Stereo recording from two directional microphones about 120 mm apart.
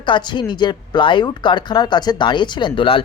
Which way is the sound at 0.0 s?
40° left (ahead or behind).